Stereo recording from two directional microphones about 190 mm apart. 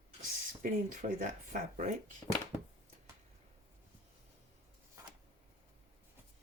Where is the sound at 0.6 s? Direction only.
45° right (ahead or behind).